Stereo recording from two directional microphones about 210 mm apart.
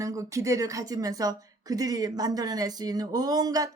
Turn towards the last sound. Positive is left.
turn(degrees=-20)  # may be behind; listen again after turning